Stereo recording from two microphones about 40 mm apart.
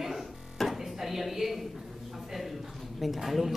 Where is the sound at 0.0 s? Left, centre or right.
Centre.